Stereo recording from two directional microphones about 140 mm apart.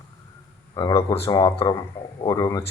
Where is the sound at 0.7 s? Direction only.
30° left (ahead or behind).